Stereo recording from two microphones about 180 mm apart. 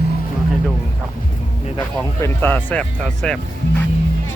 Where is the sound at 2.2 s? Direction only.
10° left (ahead or behind).